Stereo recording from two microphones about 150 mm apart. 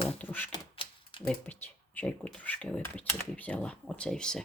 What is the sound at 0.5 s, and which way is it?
Typewriter, 35° left (ahead or behind).